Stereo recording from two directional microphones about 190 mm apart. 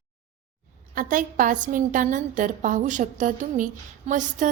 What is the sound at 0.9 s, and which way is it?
A woman's voice, 45° right (ahead or behind).